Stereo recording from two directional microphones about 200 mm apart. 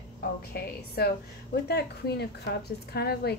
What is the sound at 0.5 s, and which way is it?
A woman's voice, 50° left (ahead or behind).